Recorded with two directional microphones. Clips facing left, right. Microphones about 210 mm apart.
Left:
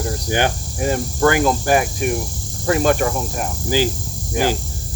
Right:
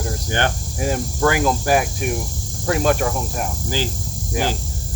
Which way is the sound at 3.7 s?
10° left (ahead or behind).